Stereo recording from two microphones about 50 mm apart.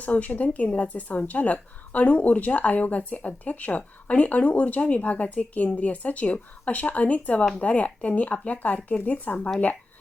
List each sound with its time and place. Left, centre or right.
0.0 s a woman's voice: left